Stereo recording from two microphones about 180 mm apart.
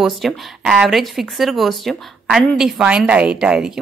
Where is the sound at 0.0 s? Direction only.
Centre (ahead or behind).